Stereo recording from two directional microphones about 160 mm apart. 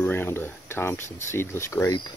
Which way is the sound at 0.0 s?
15° left (ahead or behind).